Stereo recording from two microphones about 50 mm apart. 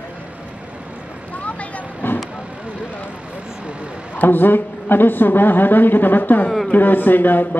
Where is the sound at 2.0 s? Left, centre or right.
Left.